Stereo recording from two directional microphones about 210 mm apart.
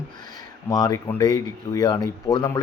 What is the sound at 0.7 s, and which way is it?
Speech, 15° left (ahead or behind).